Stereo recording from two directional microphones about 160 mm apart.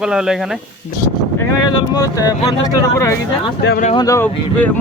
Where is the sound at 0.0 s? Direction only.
5° right (ahead or behind).